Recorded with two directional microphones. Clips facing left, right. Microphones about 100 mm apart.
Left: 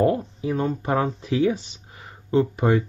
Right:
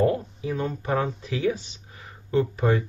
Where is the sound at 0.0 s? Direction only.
25° left (ahead or behind).